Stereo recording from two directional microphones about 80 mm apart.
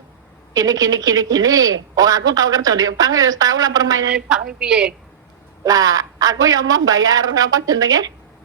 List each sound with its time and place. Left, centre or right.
0.5 s a woman's voice: right
4.1 s a woman's voice: centre
5.6 s a woman's voice: right